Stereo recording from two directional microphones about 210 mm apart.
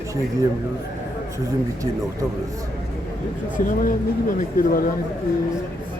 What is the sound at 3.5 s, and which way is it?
Speech, 40° left (ahead or behind).